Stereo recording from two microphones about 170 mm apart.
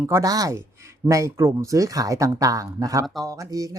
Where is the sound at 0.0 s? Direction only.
15° right (ahead or behind).